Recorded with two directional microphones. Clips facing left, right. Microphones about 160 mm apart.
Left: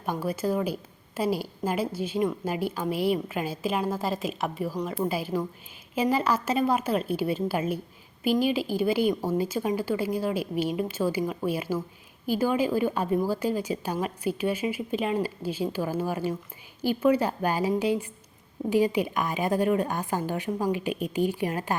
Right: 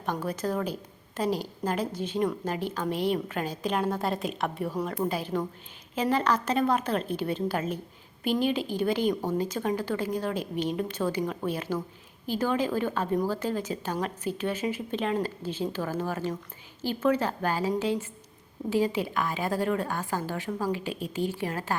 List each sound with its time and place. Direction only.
0.0 s a woman's voice: 10° left (ahead or behind)